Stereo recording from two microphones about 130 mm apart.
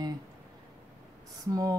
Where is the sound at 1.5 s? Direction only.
30° right (ahead or behind).